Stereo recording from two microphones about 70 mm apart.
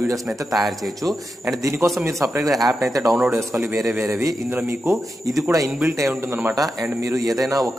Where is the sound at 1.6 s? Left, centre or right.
Right.